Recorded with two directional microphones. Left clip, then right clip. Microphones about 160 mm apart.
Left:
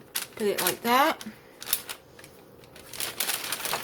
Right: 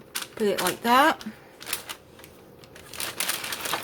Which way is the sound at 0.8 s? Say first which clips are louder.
Right 3 dB; 20° right (ahead or behind).